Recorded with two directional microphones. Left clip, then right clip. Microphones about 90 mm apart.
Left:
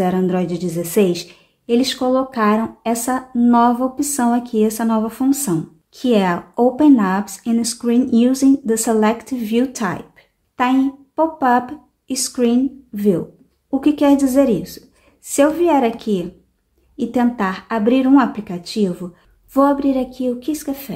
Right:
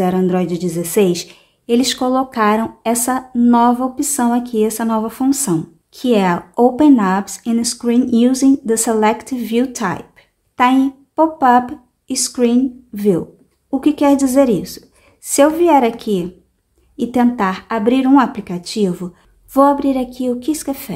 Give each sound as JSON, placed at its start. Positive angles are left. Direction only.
{"t": 0.0, "sound": "a woman's voice", "side_deg": -15}
{"t": 10.5, "sound": "a woman's voice", "side_deg": -30}